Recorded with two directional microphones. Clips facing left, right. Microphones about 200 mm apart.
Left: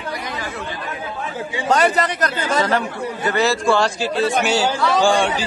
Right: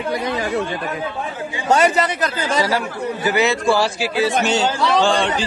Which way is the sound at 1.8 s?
10° right (ahead or behind).